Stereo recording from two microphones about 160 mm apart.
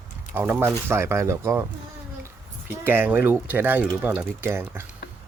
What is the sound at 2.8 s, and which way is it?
Speech, 15° right (ahead or behind).